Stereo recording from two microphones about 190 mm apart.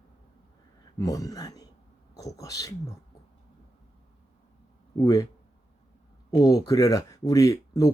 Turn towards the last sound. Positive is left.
turn(degrees=20)  # may be behind; listen again after turning